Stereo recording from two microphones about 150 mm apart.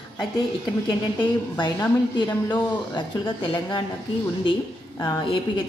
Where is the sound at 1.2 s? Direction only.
30° left (ahead or behind).